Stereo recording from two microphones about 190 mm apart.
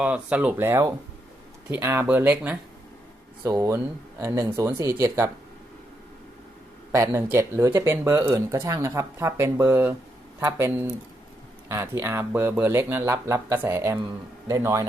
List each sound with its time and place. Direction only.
0.0 s speech: 5° right (ahead or behind)
6.9 s speech: 15° right (ahead or behind)